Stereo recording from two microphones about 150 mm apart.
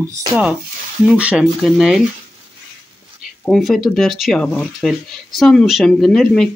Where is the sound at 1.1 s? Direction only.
10° right (ahead or behind).